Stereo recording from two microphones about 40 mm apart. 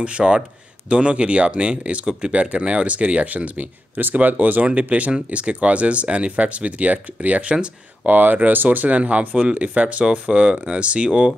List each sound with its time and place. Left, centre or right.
0.0 s speech: right
7.4 s speech: right
8.1 s speech: right
10.0 s speech: right
11.1 s speech: centre